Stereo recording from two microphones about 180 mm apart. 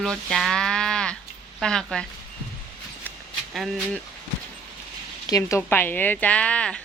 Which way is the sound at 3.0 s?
Centre (ahead or behind).